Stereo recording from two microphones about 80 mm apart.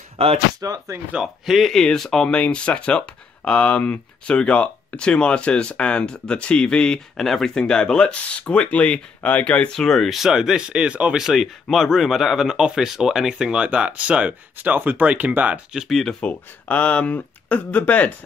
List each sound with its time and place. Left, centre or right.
0.6 s speech: right
1.1 s speech: centre
15.9 s speech: centre
16.2 s speech: centre